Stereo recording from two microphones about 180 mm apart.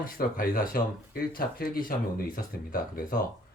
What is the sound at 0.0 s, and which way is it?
Speech, 55° left (ahead or behind).